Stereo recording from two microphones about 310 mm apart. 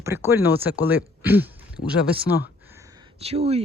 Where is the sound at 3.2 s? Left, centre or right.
Centre.